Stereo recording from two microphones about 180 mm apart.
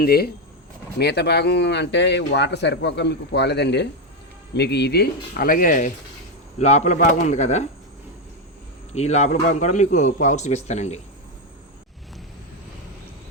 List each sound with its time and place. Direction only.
0.0 s a man's voice: 60° left (ahead or behind); by 7.7 s 40° left (ahead or behind)
8.9 s a man's voice: 40° left (ahead or behind)